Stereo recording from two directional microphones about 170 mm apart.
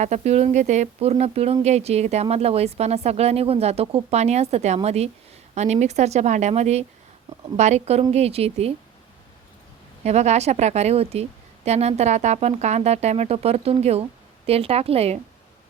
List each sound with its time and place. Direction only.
0.0 s a woman's voice: 40° right (ahead or behind)
10.0 s a woman's voice: 40° right (ahead or behind)